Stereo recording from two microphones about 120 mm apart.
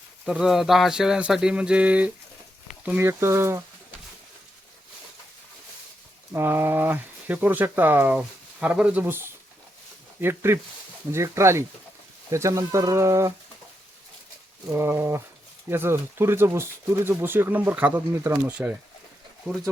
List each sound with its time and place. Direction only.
0.3 s speech: 5° right (ahead or behind); by 3.6 s 20° right (ahead or behind)
6.3 s speech: 20° right (ahead or behind)
14.7 s speech: 20° right (ahead or behind)
18.5 s speech: 10° right (ahead or behind)